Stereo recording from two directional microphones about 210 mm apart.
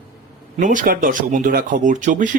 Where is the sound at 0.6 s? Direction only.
40° right (ahead or behind).